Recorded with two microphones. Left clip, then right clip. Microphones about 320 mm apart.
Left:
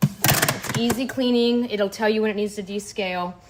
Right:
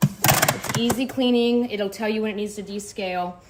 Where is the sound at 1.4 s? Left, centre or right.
Left.